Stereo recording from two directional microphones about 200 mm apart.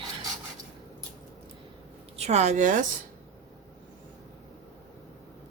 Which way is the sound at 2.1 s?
30° right (ahead or behind).